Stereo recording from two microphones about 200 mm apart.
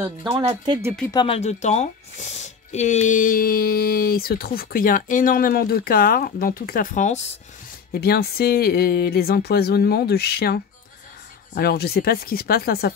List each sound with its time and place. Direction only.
0.3 s speech: 25° right (ahead or behind)
1.1 s speech: 25° left (ahead or behind)
7.9 s speech: 50° left (ahead or behind)